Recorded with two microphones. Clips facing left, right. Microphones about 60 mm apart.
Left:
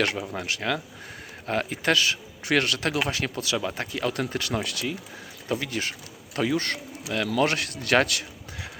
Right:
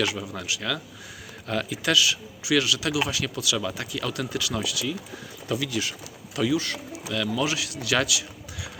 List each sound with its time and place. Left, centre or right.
0.3 s a man's voice: left